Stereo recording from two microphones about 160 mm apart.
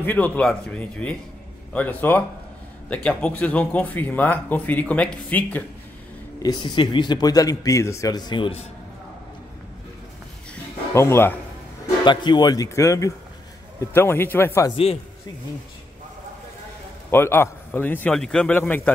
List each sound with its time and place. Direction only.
0.0 s speech: 10° left (ahead or behind)
6.4 s speech: 30° left (ahead or behind)
10.9 s speech: 15° left (ahead or behind)
12.0 s speech: 30° left (ahead or behind)
17.1 s speech: 15° left (ahead or behind)